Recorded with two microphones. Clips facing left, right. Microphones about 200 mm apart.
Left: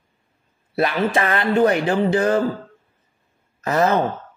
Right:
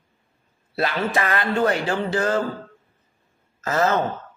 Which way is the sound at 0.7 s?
20° left (ahead or behind).